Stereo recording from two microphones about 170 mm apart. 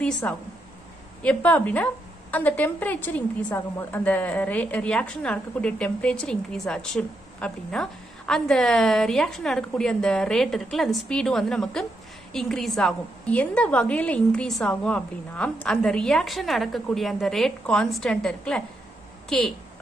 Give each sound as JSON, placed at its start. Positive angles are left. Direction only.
{"t": 0.0, "sound": "a woman's voice", "side_deg": 10}